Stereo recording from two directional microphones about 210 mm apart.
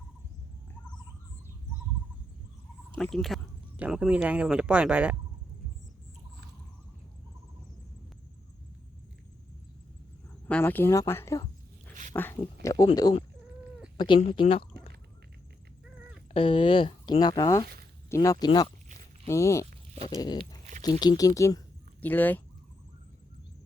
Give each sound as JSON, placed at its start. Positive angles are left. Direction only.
{"t": 3.0, "sound": "speech", "side_deg": 0}
{"t": 10.5, "sound": "speech", "side_deg": 10}
{"t": 14.2, "sound": "speech", "side_deg": 30}
{"t": 16.3, "sound": "speech", "side_deg": 25}